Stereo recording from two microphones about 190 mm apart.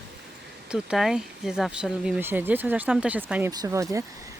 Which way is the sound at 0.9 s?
Centre (ahead or behind).